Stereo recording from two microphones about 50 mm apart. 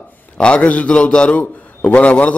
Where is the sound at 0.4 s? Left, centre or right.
Left.